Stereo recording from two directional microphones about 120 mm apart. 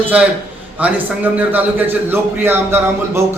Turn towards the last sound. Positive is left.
turn(degrees=-20)  # may be behind; listen again after turning